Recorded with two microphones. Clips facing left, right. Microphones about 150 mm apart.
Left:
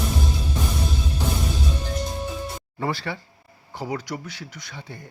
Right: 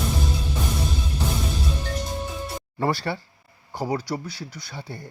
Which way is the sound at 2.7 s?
40° right (ahead or behind).